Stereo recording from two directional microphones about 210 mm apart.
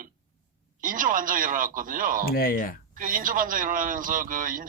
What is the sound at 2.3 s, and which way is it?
Speech, 45° left (ahead or behind).